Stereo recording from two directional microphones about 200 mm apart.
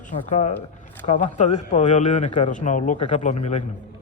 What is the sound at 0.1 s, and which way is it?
A man's voice, 35° left (ahead or behind).